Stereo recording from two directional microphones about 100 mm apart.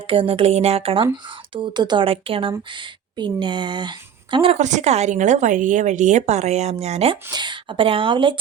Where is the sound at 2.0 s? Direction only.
70° right (ahead or behind).